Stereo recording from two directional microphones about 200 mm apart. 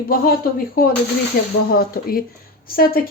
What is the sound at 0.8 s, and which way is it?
Speech, 45° left (ahead or behind).